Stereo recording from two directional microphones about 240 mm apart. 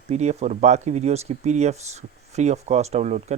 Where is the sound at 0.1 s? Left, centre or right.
Right.